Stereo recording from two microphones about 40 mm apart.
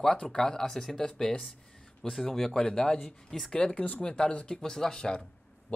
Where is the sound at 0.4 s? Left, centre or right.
Centre.